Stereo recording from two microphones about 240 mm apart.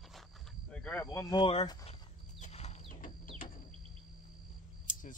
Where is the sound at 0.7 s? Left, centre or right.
Centre; by 1.9 s left.